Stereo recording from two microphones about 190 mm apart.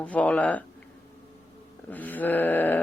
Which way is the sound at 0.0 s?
5° left (ahead or behind).